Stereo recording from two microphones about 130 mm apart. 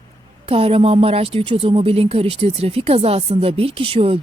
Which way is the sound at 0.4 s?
50° right (ahead or behind).